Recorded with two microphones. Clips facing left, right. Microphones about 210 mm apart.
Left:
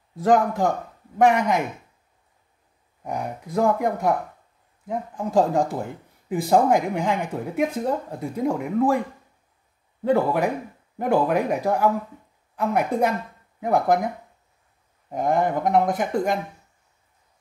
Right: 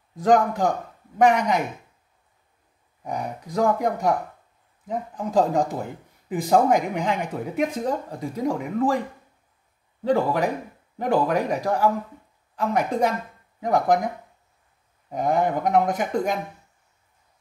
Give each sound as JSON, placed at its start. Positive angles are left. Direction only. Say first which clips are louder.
{"t": 0.2, "sound": "speech", "louder": "even", "side_deg": 5}
{"t": 3.0, "sound": "speech", "louder": "left 1 dB", "side_deg": 5}
{"t": 10.0, "sound": "speech", "louder": "left 1 dB", "side_deg": 5}